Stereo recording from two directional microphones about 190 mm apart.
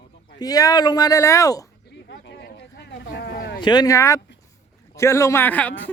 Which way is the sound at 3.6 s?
20° left (ahead or behind).